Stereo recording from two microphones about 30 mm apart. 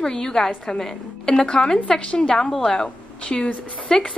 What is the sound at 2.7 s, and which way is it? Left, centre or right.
A woman's voice, left.